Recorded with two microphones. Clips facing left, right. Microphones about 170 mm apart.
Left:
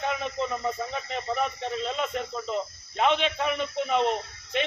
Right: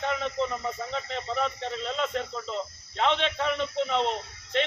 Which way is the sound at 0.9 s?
10° left (ahead or behind).